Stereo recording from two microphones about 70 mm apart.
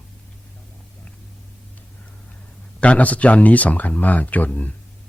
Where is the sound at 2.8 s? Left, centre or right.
Centre.